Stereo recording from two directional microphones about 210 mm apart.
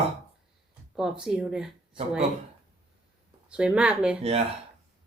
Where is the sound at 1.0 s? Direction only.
5° right (ahead or behind).